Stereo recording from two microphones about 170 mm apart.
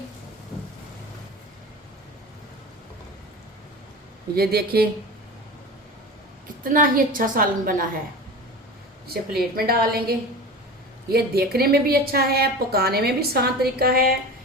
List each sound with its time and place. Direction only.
4.4 s a woman's voice: 65° right (ahead or behind)
6.7 s a woman's voice: 50° right (ahead or behind)
9.6 s a woman's voice: 65° right (ahead or behind)